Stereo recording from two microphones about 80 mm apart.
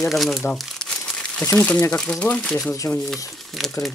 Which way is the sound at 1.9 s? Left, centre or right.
Centre.